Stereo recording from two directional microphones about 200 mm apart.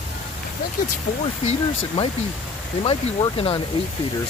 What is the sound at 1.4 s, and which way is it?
Speech, 35° left (ahead or behind).